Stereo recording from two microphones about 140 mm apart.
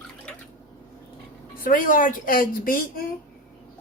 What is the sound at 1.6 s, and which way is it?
A woman's voice, 75° left (ahead or behind).